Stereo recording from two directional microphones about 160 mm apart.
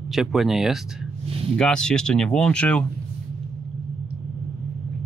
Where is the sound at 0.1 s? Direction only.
Centre (ahead or behind).